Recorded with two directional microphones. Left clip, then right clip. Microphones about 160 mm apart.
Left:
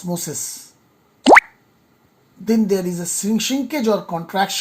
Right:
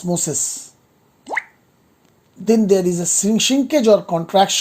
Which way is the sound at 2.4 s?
60° right (ahead or behind).